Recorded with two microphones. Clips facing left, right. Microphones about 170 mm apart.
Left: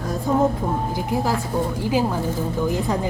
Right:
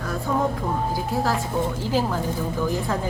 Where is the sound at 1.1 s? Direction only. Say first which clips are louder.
Left 3 dB; 15° left (ahead or behind).